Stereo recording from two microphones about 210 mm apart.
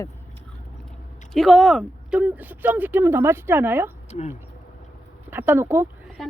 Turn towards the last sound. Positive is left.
turn(degrees=-10)  # may be behind; listen again after turning